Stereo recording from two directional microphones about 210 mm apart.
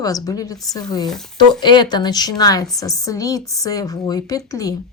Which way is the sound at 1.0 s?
Centre (ahead or behind).